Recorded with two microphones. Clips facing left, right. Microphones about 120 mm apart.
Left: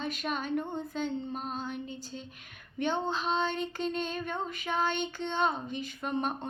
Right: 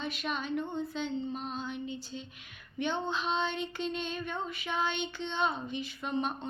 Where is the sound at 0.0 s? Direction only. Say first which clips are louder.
Left 2 dB; 45° left (ahead or behind).